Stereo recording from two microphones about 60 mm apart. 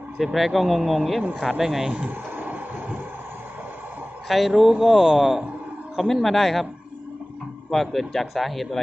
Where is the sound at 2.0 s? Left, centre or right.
Right.